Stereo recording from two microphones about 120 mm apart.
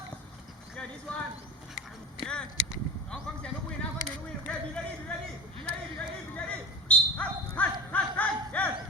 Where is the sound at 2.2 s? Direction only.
10° left (ahead or behind).